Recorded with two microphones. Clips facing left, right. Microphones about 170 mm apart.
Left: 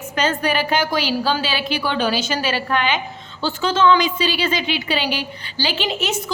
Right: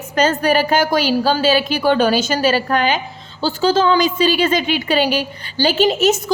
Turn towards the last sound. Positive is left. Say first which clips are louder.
# right 9 dB
turn(degrees=-40)  # may be behind; listen again after turning